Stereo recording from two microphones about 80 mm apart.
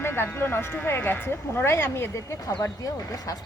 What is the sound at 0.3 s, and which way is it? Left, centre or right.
Speech, left.